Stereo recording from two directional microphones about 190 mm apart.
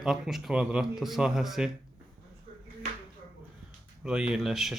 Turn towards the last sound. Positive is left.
turn(degrees=0)  # may be behind; listen again after turning